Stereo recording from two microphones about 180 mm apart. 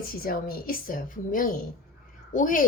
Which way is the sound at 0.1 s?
55° left (ahead or behind).